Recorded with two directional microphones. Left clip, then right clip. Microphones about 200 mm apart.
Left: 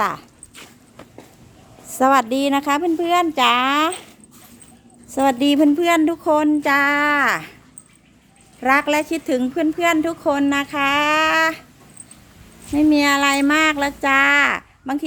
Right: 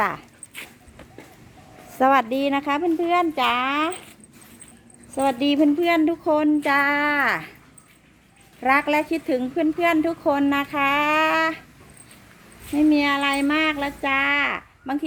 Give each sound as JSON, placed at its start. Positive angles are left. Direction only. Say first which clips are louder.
{"t": 0.0, "sound": "dog", "louder": "left 2 dB", "side_deg": 5}
{"t": 2.0, "sound": "a woman's voice", "louder": "left 3 dB", "side_deg": 5}
{"t": 5.1, "sound": "a woman's voice", "louder": "left 4 dB", "side_deg": 20}
{"t": 8.6, "sound": "a woman's voice", "louder": "left 3 dB", "side_deg": 10}
{"t": 12.7, "sound": "a woman's voice", "louder": "left 4 dB", "side_deg": 15}